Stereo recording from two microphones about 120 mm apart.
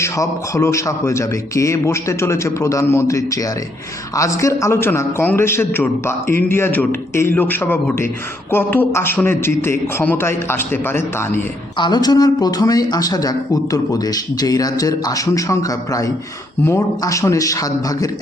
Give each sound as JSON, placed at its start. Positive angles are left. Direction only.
{"t": 0.0, "sound": "a man's voice", "side_deg": 25}
{"t": 11.8, "sound": "a man's voice", "side_deg": 35}